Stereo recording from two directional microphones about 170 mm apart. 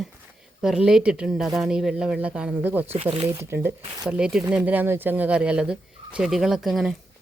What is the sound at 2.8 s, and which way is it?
Speech, 35° right (ahead or behind).